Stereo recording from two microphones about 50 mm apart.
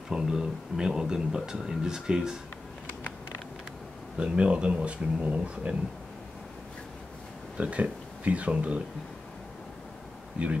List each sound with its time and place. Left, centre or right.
0.1 s speech: centre
4.2 s speech: right
7.5 s speech: right